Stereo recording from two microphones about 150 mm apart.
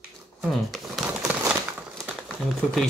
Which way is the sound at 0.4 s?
Centre (ahead or behind).